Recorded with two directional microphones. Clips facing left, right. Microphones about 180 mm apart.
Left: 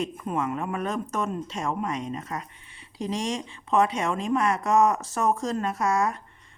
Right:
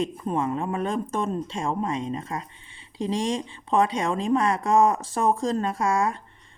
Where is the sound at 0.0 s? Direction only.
30° right (ahead or behind).